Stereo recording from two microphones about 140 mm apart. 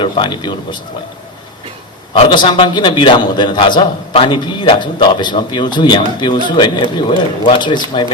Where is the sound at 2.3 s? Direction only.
35° left (ahead or behind).